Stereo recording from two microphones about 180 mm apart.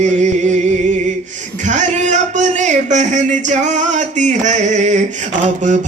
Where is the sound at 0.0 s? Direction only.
40° right (ahead or behind).